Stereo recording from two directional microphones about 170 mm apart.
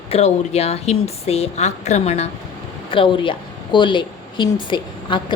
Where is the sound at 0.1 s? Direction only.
40° left (ahead or behind).